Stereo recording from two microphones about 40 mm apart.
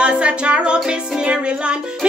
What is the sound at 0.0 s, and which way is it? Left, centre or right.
Music, right.